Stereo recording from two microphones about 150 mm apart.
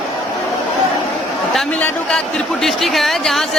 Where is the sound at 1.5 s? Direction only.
5° left (ahead or behind).